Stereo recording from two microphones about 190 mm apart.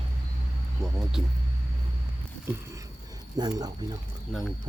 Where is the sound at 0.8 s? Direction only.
Centre (ahead or behind).